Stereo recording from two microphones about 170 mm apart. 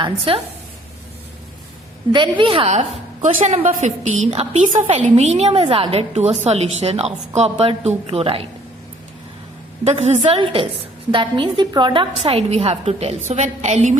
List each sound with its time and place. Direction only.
0.0 s a woman's voice: 30° right (ahead or behind)
2.1 s a woman's voice: 30° right (ahead or behind)
9.8 s a woman's voice: 40° right (ahead or behind)